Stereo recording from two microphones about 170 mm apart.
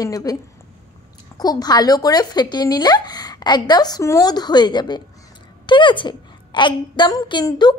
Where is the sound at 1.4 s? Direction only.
25° left (ahead or behind).